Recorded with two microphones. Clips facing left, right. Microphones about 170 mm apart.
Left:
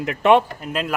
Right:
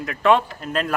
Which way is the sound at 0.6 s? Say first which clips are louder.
Right 1 dB; 10° left (ahead or behind).